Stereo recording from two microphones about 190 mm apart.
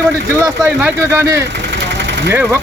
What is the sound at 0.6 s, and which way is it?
Speech, 10° right (ahead or behind).